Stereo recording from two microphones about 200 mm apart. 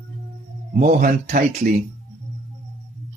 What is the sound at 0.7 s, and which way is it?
Speech, 40° right (ahead or behind).